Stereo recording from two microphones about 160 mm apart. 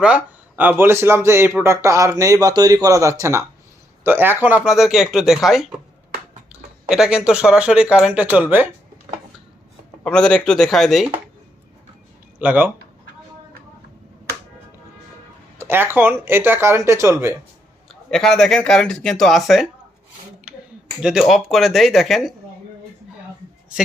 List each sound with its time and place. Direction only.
0.0 s speech: 10° right (ahead or behind)
10.0 s speech: 5° left (ahead or behind)
12.4 s speech: 10° right (ahead or behind)
15.5 s speech: 15° right (ahead or behind)
17.8 s speech: 5° left (ahead or behind)
21.0 s speech: 5° right (ahead or behind)